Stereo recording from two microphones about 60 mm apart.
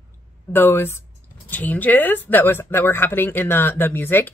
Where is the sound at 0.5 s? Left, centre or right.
Left.